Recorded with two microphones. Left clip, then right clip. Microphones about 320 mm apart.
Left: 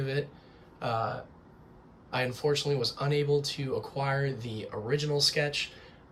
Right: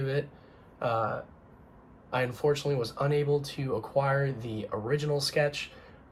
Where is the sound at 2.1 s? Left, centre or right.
Centre.